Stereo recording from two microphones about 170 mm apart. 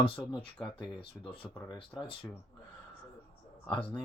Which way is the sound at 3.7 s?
30° left (ahead or behind).